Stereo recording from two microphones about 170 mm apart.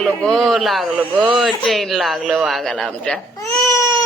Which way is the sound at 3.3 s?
20° left (ahead or behind).